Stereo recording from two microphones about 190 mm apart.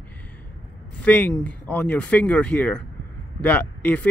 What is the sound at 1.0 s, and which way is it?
Speech, 5° left (ahead or behind).